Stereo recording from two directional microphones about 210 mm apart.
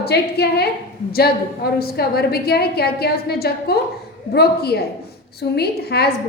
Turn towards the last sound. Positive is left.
turn(degrees=50)  # may be behind; listen again after turning